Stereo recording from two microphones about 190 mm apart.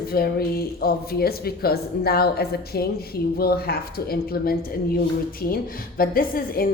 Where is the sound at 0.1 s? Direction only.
55° left (ahead or behind).